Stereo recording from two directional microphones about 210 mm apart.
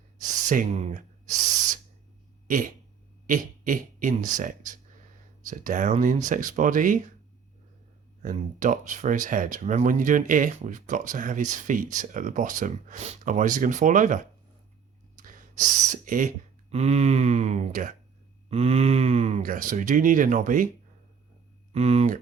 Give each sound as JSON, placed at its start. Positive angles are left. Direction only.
{"t": 0.2, "sound": "owl", "side_deg": -40}
{"t": 2.5, "sound": "speech", "side_deg": -40}
{"t": 8.2, "sound": "speech", "side_deg": -40}
{"t": 21.7, "sound": "speech", "side_deg": -30}